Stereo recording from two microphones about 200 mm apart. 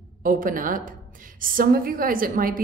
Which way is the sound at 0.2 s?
45° right (ahead or behind).